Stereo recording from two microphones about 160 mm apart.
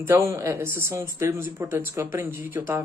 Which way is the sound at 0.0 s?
15° right (ahead or behind).